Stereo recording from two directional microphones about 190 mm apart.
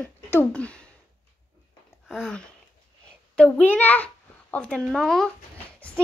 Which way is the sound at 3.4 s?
10° left (ahead or behind).